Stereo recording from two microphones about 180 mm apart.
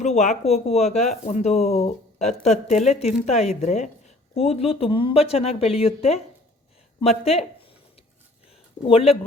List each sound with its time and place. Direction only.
0.0 s speech: 40° left (ahead or behind)
8.8 s speech: 30° left (ahead or behind)